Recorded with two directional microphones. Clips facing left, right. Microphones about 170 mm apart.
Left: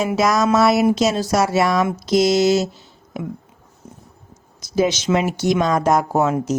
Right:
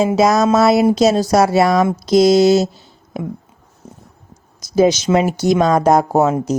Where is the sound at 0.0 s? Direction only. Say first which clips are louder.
Right 4 dB; 30° right (ahead or behind).